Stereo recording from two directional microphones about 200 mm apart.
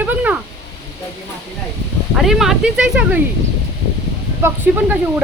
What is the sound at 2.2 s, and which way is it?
Speech, centre (ahead or behind).